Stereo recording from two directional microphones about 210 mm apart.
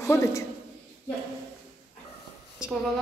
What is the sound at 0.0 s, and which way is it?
Speech, 15° left (ahead or behind).